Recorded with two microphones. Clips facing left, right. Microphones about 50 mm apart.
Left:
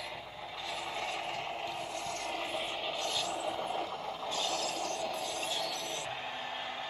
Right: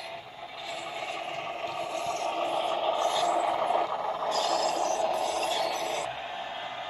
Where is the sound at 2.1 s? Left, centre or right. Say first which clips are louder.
Right 9 dB; right.